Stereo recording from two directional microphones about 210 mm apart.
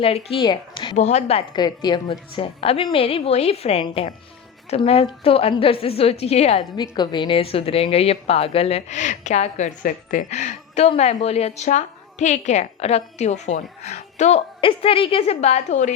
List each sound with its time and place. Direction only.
0.0 s a woman's voice: 30° left (ahead or behind)